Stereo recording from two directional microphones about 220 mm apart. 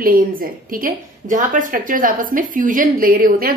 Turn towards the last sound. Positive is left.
turn(degrees=-40)  # may be behind; listen again after turning